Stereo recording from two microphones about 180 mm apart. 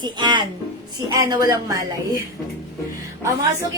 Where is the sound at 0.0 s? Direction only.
25° right (ahead or behind).